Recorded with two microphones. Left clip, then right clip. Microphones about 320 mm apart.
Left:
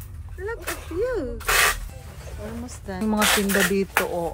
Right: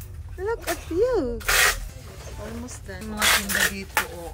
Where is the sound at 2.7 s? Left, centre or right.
Centre.